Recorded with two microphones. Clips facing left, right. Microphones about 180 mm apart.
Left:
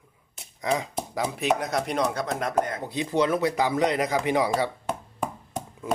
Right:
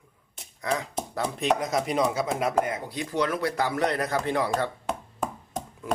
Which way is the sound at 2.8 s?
20° left (ahead or behind).